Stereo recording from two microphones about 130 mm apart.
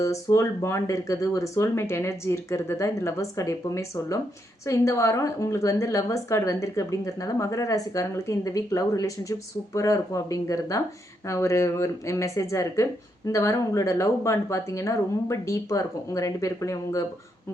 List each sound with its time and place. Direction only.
0.0 s a woman's voice: 25° left (ahead or behind)